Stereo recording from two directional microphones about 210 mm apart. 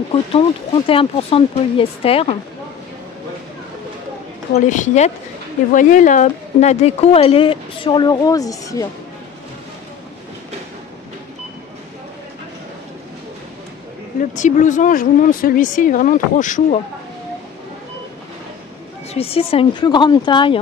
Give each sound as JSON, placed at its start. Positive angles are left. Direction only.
{"t": 0.1, "sound": "speech", "side_deg": 25}
{"t": 4.6, "sound": "speech", "side_deg": 35}
{"t": 14.3, "sound": "speech", "side_deg": 35}
{"t": 19.1, "sound": "speech", "side_deg": 25}